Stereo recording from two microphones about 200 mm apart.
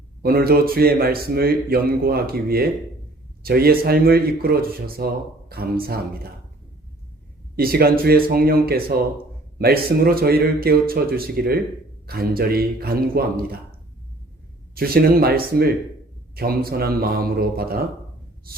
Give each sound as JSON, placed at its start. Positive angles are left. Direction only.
{"t": 0.2, "sound": "a man's voice", "side_deg": -50}
{"t": 7.5, "sound": "a man's voice", "side_deg": -50}
{"t": 14.8, "sound": "a man's voice", "side_deg": -50}